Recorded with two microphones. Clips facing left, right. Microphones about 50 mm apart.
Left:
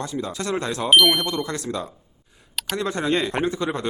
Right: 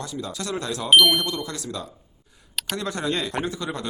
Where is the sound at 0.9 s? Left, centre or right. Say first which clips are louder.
Even; centre.